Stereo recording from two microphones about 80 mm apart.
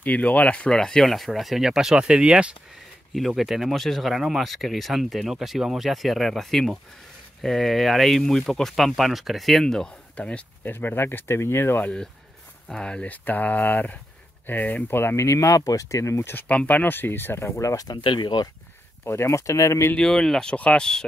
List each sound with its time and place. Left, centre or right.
0.0 s speech: centre
3.2 s speech: centre; by 11.8 s left
11.8 s speech: centre; by 15.2 s left
15.2 s speech: left
16.3 s speech: left
17.8 s speech: left
19.0 s speech: left
20.0 s speech: centre